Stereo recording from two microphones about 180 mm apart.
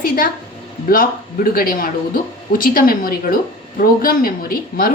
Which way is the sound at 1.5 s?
55° left (ahead or behind).